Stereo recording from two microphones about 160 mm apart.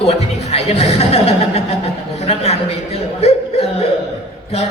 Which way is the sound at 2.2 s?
40° left (ahead or behind).